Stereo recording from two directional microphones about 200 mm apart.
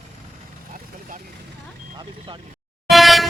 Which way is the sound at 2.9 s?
Centre (ahead or behind).